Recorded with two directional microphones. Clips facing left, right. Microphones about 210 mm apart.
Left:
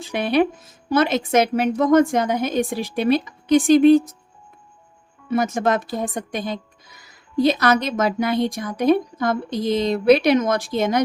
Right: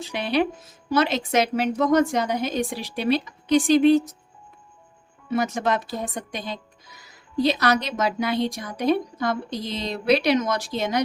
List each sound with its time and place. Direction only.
0.0 s a woman's voice: 50° left (ahead or behind)
5.3 s a woman's voice: 50° left (ahead or behind)